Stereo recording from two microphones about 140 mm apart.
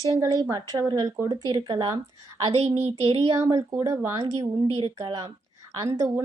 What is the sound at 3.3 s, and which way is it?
Speech, 20° right (ahead or behind).